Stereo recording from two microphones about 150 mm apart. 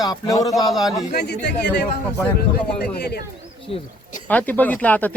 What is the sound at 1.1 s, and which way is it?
Speech, 90° left.